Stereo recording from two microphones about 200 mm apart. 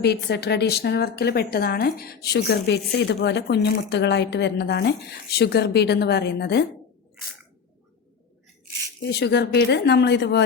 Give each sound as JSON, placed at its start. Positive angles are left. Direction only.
{"t": 0.0, "sound": "a woman's voice", "side_deg": 55}
{"t": 9.0, "sound": "a woman's voice", "side_deg": 55}